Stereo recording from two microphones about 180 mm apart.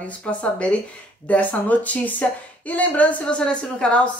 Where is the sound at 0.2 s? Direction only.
5° left (ahead or behind).